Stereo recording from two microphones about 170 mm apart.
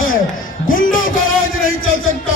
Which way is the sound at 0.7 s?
55° left (ahead or behind).